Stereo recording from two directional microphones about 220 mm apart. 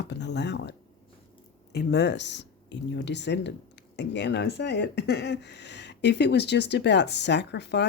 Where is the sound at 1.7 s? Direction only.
50° left (ahead or behind).